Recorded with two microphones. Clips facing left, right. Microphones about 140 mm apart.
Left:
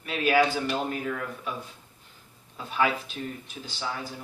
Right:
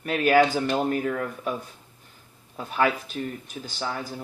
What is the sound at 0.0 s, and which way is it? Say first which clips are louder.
Speech: right 4 dB; 50° right (ahead or behind).